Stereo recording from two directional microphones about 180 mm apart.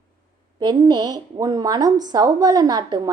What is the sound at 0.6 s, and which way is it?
Speech, 25° right (ahead or behind).